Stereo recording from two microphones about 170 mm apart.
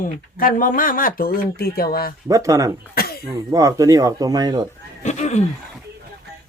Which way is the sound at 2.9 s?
65° left (ahead or behind).